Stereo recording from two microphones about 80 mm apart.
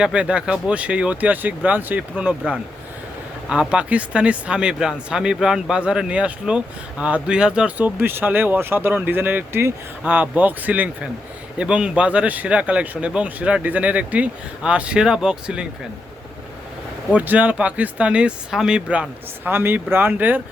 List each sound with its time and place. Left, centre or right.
0.0 s speech: centre
3.5 s speech: centre; by 9.7 s right
10.0 s speech: right
17.1 s speech: centre
19.5 s speech: right